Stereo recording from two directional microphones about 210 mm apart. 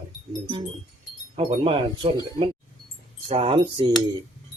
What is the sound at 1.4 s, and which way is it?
Speech, 25° right (ahead or behind).